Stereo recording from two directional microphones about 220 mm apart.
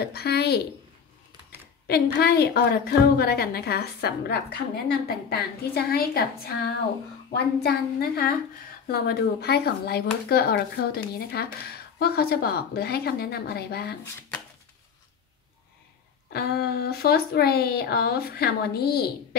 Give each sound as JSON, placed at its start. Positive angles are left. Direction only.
{"t": 0.0, "sound": "speech", "side_deg": 45}
{"t": 2.1, "sound": "speech", "side_deg": 45}
{"t": 16.3, "sound": "speech", "side_deg": 45}